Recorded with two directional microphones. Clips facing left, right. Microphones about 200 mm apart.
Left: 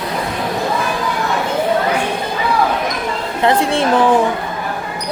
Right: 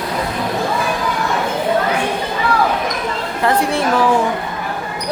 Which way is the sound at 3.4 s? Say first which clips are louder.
Left 2 dB; 25° left (ahead or behind).